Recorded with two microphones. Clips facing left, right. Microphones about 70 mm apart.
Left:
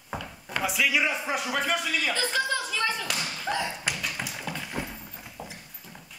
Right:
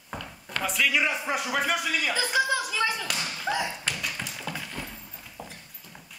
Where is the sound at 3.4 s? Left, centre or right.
Centre.